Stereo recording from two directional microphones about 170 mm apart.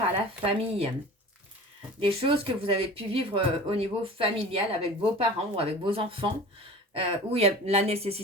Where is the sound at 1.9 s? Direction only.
30° right (ahead or behind).